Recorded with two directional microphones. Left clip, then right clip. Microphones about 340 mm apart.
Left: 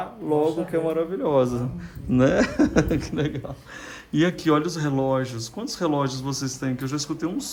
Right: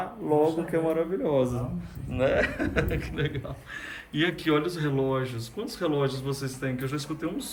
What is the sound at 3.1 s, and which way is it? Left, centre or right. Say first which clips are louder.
Speech: left 4 dB; centre.